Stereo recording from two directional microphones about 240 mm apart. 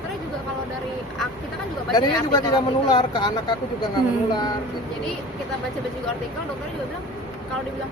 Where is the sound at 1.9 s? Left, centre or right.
Centre.